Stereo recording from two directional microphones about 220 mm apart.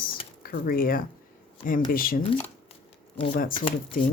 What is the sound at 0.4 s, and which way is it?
Speech, 40° left (ahead or behind).